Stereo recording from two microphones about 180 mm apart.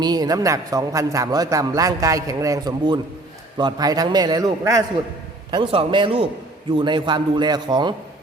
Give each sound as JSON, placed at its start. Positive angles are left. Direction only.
{"t": 0.0, "sound": "a man's voice", "side_deg": -20}